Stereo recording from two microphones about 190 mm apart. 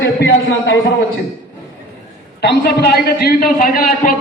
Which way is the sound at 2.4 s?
60° left (ahead or behind).